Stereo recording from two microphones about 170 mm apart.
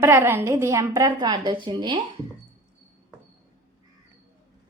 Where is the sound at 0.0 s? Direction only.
15° right (ahead or behind).